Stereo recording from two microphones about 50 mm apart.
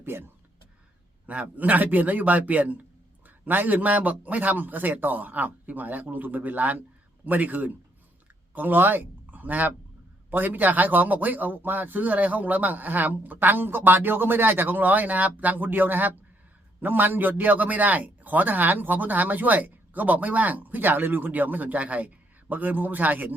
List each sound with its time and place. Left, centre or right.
0.0 s speech: right
1.3 s a man's voice: right